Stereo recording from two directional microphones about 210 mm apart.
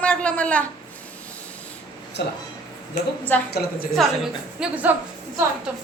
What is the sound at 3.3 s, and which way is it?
Speech, 10° left (ahead or behind).